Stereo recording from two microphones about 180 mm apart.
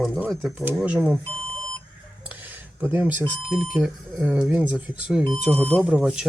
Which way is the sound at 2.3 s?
10° right (ahead or behind).